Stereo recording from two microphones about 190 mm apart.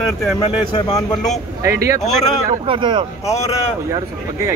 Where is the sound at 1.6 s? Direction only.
15° right (ahead or behind).